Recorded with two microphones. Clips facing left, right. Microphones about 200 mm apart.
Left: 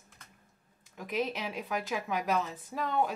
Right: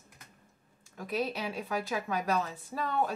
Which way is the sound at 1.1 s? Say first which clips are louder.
Even; 15° left (ahead or behind).